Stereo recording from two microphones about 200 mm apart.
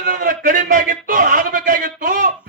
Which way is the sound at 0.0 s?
45° right (ahead or behind).